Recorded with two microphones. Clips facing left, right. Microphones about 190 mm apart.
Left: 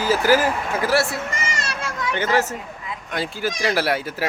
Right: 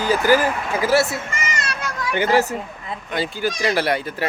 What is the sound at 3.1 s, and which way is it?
Speech, centre (ahead or behind).